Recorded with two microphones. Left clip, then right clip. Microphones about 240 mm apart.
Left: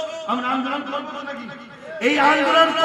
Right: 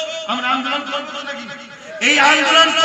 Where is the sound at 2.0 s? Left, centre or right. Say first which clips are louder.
Right 4 dB; left.